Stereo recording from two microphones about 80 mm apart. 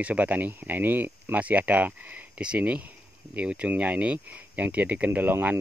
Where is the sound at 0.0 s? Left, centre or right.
Centre.